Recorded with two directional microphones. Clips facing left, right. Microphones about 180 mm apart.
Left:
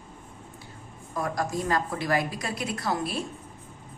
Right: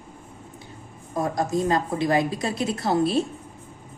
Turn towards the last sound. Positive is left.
turn(degrees=-25)  # may be behind; listen again after turning